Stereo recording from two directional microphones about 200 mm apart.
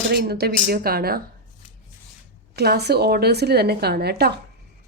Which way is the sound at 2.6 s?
55° right (ahead or behind).